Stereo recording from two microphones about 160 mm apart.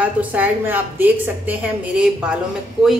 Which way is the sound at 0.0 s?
10° right (ahead or behind).